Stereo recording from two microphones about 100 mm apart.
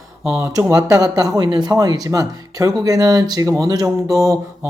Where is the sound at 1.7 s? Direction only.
40° right (ahead or behind).